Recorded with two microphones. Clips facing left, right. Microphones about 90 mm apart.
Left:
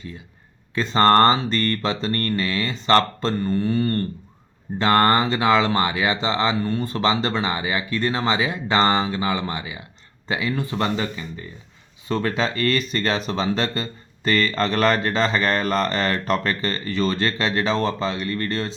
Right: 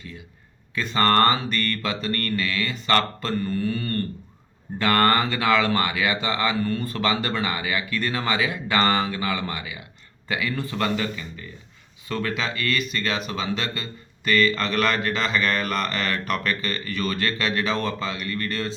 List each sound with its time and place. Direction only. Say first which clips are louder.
0.8 s speech: left 4 dB; 30° left (ahead or behind)